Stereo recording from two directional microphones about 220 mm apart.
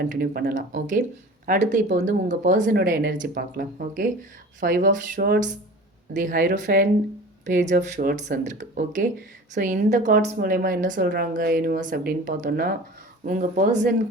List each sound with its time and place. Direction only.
0.0 s a woman's voice: 45° right (ahead or behind)